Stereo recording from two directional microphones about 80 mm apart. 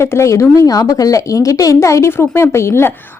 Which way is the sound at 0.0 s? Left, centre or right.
Left.